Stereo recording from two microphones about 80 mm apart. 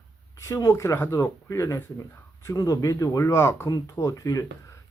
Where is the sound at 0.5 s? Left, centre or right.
Left.